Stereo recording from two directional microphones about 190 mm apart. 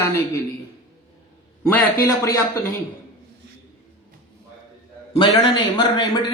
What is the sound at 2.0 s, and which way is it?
Speech, 15° left (ahead or behind).